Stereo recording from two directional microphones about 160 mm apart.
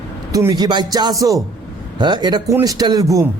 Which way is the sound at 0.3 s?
25° right (ahead or behind).